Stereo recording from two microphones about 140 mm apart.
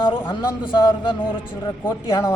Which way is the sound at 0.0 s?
35° left (ahead or behind).